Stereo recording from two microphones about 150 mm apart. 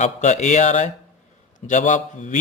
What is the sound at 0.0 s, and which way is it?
A man's voice, 50° left (ahead or behind).